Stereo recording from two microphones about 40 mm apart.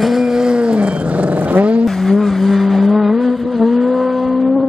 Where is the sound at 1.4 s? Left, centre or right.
Right.